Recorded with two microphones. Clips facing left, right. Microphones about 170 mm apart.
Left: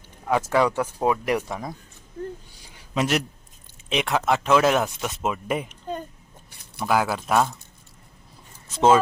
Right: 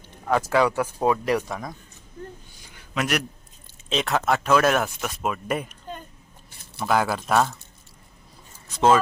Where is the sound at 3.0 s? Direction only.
25° left (ahead or behind).